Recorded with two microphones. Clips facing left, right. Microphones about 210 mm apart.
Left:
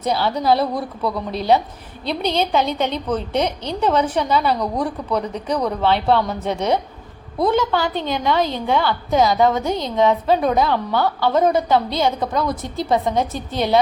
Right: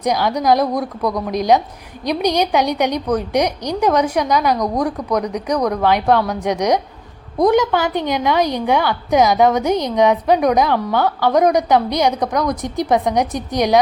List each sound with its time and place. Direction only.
0.0 s a woman's voice: 15° right (ahead or behind)